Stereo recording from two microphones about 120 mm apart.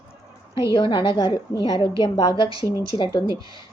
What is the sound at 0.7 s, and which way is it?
Speech, 40° left (ahead or behind).